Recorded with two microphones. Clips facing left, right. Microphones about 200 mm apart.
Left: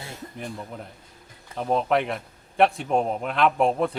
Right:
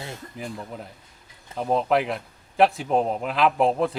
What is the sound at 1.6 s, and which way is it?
A man's voice, centre (ahead or behind).